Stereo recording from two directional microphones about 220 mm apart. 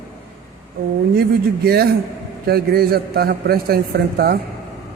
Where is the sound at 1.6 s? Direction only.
45° right (ahead or behind).